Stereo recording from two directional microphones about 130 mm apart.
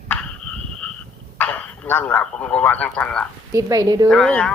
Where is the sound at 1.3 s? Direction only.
10° left (ahead or behind).